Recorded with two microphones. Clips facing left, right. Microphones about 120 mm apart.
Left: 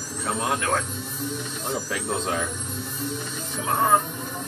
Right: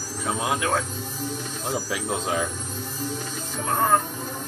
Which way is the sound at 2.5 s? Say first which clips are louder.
Even; 35° right (ahead or behind).